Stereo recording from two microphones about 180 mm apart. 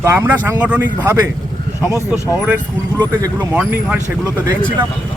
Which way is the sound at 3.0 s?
20° right (ahead or behind).